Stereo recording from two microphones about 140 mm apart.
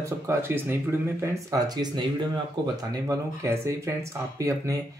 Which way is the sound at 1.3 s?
25° right (ahead or behind).